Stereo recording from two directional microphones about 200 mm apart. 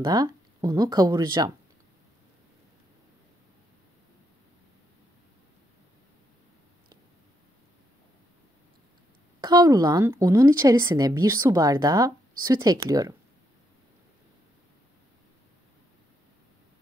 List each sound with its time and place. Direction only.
0.0 s speech: 20° right (ahead or behind)
9.4 s speech: 20° right (ahead or behind)